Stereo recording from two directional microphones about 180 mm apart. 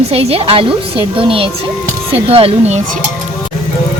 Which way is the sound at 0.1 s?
35° right (ahead or behind).